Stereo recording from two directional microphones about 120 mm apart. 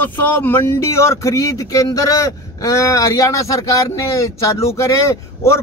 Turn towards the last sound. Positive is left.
turn(degrees=25)  # may be behind; listen again after turning